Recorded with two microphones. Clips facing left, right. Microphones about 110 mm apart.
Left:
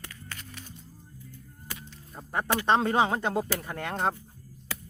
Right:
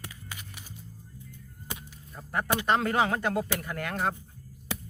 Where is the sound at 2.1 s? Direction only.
25° left (ahead or behind).